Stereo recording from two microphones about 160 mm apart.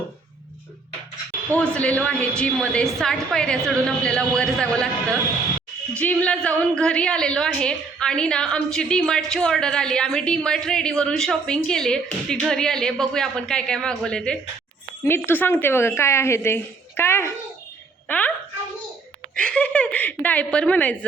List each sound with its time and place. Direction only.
1.5 s a woman's voice: 5° left (ahead or behind)
6.0 s a woman's voice: 5° left (ahead or behind)
19.4 s speech: 5° left (ahead or behind)